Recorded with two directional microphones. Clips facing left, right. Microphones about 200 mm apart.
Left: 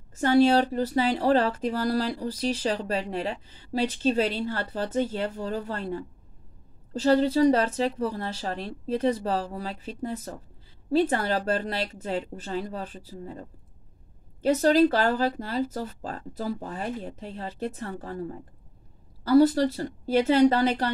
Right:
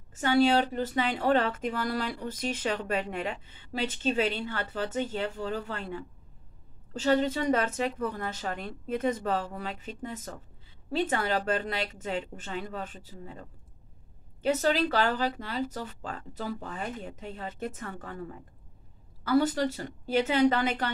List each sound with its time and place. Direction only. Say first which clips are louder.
0.1 s speech: left 4 dB; 40° left (ahead or behind)